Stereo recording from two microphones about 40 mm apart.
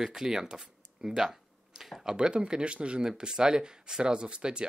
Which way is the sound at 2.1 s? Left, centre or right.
Right.